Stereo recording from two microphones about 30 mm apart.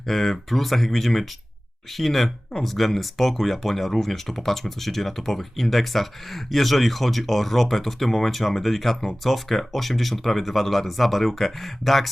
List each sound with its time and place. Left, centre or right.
0.1 s speech: centre